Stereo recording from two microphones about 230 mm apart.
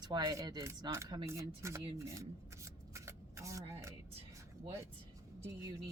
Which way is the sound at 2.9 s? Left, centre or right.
Centre.